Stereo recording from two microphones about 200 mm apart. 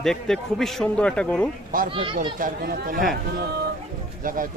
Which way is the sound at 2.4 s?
45° right (ahead or behind).